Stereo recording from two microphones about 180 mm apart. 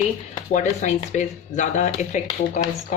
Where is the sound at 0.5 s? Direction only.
40° left (ahead or behind).